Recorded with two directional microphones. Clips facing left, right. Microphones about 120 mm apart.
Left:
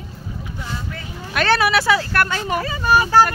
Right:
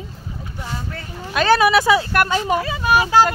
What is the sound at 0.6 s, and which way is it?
Speech, 40° right (ahead or behind).